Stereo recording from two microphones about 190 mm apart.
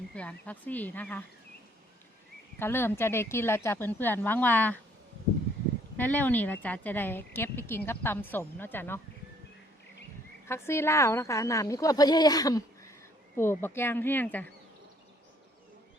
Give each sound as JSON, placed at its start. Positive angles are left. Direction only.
{"t": 0.1, "sound": "a woman's voice", "side_deg": 5}
{"t": 2.6, "sound": "a woman's voice", "side_deg": 10}
{"t": 6.0, "sound": "a woman's voice", "side_deg": 10}
{"t": 10.5, "sound": "a woman's voice", "side_deg": 15}